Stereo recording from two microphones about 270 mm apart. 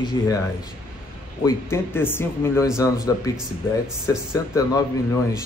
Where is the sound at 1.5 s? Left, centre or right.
Centre.